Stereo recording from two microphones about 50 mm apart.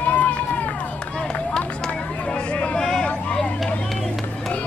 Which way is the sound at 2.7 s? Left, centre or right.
Centre.